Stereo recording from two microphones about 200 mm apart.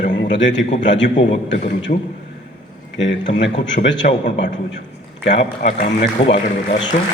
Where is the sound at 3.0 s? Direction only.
65° left (ahead or behind).